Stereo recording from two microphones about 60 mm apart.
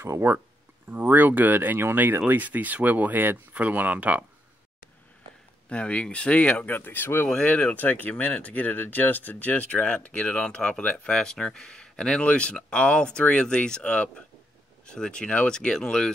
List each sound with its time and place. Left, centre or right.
0.1 s speech: right
5.7 s speech: centre
6.7 s speech: left
7.4 s speech: left